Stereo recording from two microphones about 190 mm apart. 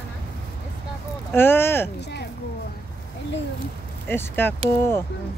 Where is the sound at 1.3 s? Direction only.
10° left (ahead or behind).